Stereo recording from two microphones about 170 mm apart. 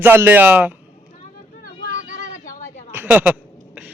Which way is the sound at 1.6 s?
50° left (ahead or behind).